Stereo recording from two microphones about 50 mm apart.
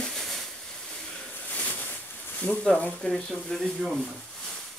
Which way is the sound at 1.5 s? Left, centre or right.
Left.